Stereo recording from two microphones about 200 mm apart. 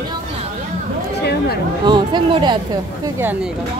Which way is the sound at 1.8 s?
25° right (ahead or behind).